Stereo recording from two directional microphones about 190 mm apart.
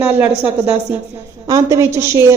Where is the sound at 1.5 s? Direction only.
15° right (ahead or behind).